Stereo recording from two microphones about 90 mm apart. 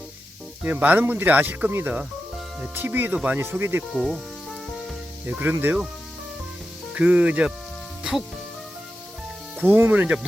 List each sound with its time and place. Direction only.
0.6 s speech: 20° right (ahead or behind)
3.9 s speech: centre (ahead or behind)
5.2 s speech: 20° right (ahead or behind)
6.9 s speech: 15° right (ahead or behind)
9.6 s speech: 20° right (ahead or behind)